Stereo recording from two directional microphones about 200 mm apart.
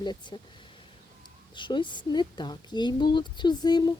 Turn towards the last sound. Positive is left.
turn(degrees=20)  # may be behind; listen again after turning